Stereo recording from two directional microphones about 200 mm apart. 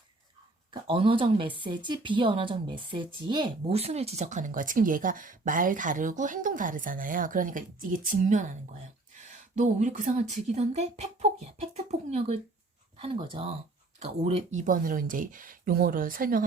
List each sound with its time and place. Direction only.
0.7 s speech: 25° right (ahead or behind); by 16.4 s 45° right (ahead or behind)